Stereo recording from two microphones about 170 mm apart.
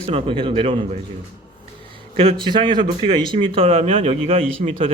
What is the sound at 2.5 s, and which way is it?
A man's voice, 30° right (ahead or behind).